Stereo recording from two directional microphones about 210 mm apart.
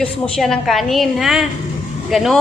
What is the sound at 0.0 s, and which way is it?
A woman's voice, centre (ahead or behind).